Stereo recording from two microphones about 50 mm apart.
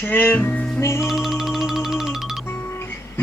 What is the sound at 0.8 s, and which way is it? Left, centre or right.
Music, left.